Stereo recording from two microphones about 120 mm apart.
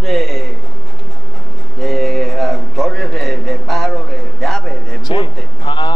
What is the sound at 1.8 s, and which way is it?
A man's voice, 5° left (ahead or behind).